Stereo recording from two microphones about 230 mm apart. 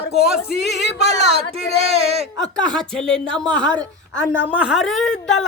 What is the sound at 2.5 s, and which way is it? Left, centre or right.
Speech, centre.